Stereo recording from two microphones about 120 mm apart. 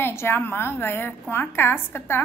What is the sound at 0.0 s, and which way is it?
A woman's voice, 20° left (ahead or behind).